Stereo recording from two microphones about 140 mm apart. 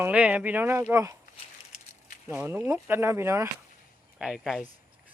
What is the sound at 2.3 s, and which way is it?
Speech, 15° right (ahead or behind).